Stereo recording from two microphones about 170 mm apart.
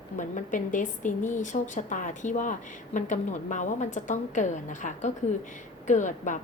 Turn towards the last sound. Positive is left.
turn(degrees=45)  # may be behind; listen again after turning